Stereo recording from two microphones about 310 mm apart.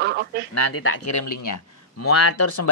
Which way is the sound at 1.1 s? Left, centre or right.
Left.